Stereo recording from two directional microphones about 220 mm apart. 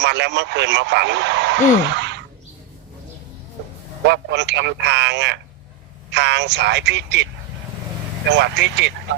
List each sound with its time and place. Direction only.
0.0 s speech: 50° right (ahead or behind)
4.0 s speech: 50° right (ahead or behind)
8.4 s speech: 50° right (ahead or behind)